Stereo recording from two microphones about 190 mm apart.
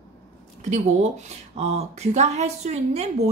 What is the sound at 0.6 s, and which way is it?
A woman's voice, 40° right (ahead or behind).